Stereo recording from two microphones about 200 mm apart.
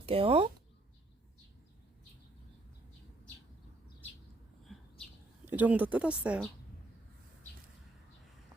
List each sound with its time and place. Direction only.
0.0 s speech: 30° right (ahead or behind)
4.6 s bird: centre (ahead or behind)
5.5 s speech: 10° right (ahead or behind)